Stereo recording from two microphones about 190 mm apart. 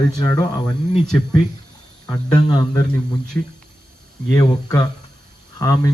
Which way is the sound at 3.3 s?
10° left (ahead or behind).